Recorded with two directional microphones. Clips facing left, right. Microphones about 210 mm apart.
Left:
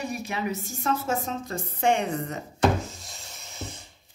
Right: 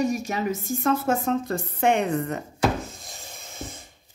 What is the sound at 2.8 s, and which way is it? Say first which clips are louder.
Rub: even; 55° right (ahead or behind).